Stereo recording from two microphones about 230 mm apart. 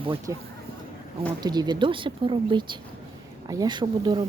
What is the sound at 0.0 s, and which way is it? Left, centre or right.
Speech, right.